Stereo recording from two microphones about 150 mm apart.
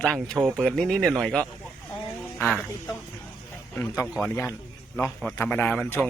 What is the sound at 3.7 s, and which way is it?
Speech, 15° left (ahead or behind).